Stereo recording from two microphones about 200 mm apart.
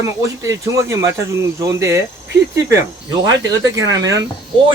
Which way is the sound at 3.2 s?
20° right (ahead or behind).